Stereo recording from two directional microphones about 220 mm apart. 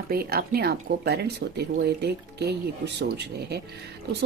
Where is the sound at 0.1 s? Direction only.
45° right (ahead or behind).